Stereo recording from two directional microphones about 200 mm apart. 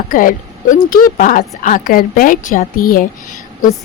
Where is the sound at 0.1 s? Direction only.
45° left (ahead or behind).